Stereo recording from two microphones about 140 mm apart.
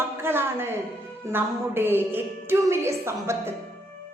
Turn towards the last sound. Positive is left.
turn(degrees=-20)  # may be behind; listen again after turning